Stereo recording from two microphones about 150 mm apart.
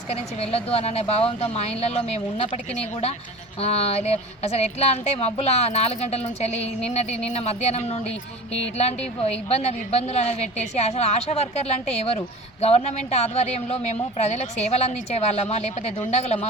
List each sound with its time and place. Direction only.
0.1 s a woman's voice: 45° left (ahead or behind)
3.6 s a woman's voice: 45° left (ahead or behind)